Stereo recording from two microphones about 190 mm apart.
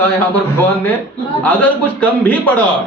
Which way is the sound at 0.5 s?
10° left (ahead or behind).